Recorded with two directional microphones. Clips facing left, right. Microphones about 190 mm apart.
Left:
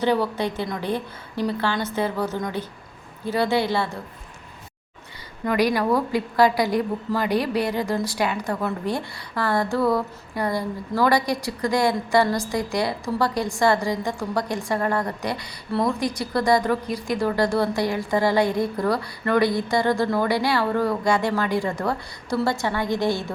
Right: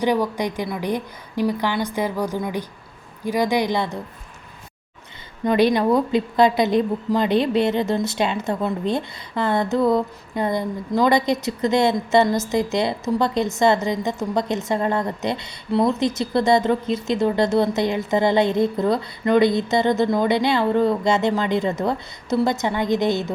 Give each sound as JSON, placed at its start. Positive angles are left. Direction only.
{"t": 0.0, "sound": "a woman's voice", "side_deg": -15}
{"t": 5.5, "sound": "a woman's voice", "side_deg": -25}